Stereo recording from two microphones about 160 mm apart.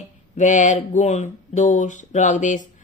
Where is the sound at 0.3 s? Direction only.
50° left (ahead or behind).